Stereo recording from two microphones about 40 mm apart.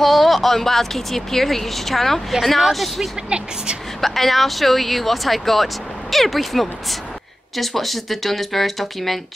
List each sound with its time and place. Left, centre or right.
0.0 s speech: centre
3.3 s speech: right
4.0 s speech: centre